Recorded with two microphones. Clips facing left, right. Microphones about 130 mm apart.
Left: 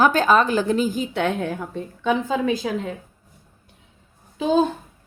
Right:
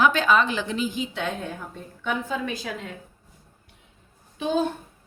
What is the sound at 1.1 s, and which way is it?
A woman's voice, 65° left (ahead or behind).